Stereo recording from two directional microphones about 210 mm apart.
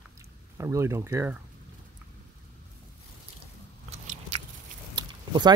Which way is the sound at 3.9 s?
30° right (ahead or behind).